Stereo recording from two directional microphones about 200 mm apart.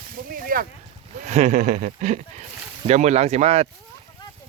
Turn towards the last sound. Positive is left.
turn(degrees=-30)  # may be behind; listen again after turning